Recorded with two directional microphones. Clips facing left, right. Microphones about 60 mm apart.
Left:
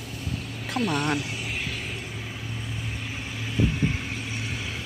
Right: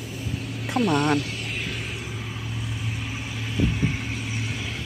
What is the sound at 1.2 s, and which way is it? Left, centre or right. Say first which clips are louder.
Vehicle: right 1 dB; centre.